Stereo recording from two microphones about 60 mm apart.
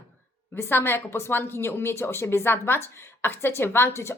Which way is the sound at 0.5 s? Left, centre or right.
Left.